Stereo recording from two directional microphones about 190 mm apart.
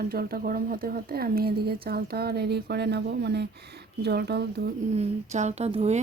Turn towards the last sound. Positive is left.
turn(degrees=-35)  # may be behind; listen again after turning